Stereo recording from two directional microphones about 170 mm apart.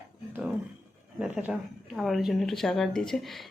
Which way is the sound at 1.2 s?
5° right (ahead or behind).